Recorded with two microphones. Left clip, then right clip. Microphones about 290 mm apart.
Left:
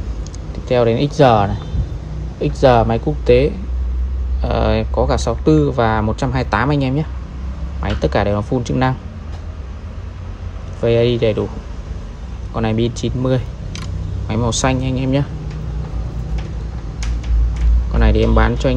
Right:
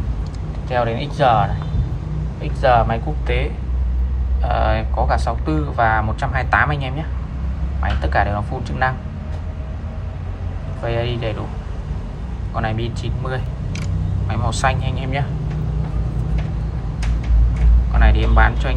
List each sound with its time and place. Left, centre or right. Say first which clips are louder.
0.7 s speech: left 6 dB; left
4.5 s speech: left 2 dB; centre
10.9 s speech: left 9 dB; centre
12.5 s speech: left 5 dB; centre
17.9 s speech: left 3 dB; centre